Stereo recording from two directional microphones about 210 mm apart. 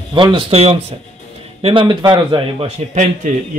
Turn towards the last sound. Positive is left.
turn(degrees=-40)  # may be behind; listen again after turning